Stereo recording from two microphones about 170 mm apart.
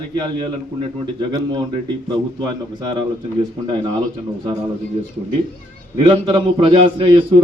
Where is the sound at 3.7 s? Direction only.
25° right (ahead or behind).